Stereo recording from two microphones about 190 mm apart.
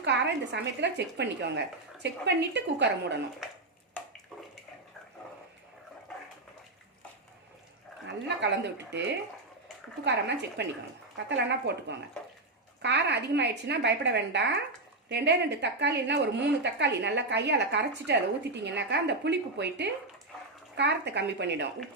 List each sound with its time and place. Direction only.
0.0 s a woman's voice: 65° right (ahead or behind)
8.0 s a woman's voice: 65° right (ahead or behind)